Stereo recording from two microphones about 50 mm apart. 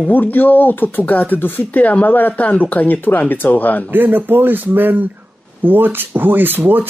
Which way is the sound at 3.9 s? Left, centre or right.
Right.